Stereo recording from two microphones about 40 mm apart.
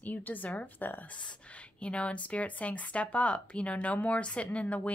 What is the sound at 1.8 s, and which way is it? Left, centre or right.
A woman's voice, left.